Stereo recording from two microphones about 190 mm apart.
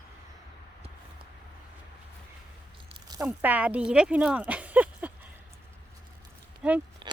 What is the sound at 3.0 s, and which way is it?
Speech, 15° right (ahead or behind).